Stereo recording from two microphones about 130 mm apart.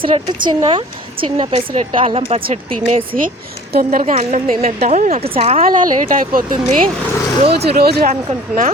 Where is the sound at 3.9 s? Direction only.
80° right.